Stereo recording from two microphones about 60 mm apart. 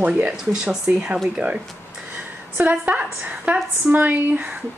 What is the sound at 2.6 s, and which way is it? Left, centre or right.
A woman's voice, right.